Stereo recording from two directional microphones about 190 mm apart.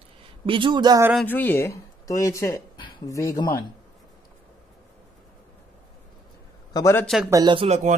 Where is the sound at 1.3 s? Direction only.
10° left (ahead or behind).